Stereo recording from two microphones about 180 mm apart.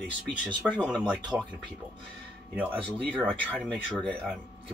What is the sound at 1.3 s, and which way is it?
Speech, 15° right (ahead or behind).